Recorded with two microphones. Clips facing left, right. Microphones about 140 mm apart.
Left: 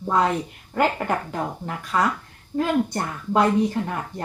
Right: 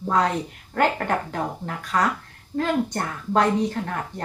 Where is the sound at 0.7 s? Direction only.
5° left (ahead or behind).